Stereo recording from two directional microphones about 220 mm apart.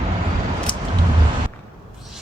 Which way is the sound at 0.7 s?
20° left (ahead or behind).